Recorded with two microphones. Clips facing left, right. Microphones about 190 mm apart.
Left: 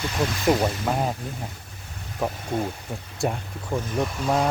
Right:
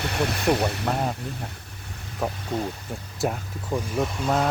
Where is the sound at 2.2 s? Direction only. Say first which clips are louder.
Left 1 dB; centre (ahead or behind).